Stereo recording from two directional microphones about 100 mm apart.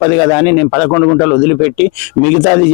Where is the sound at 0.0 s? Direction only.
15° left (ahead or behind).